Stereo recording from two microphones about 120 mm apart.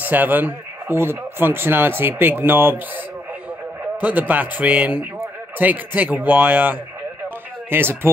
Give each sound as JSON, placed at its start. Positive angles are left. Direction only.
{"t": 0.0, "sound": "speech", "side_deg": -15}
{"t": 4.0, "sound": "speech", "side_deg": -15}